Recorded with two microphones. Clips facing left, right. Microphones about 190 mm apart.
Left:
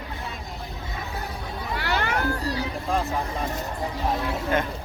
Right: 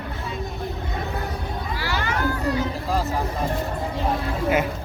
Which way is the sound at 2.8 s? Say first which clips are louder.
Right 1 dB; centre (ahead or behind).